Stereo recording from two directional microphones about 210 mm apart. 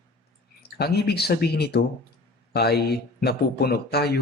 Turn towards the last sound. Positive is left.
turn(degrees=50)  # may be behind; listen again after turning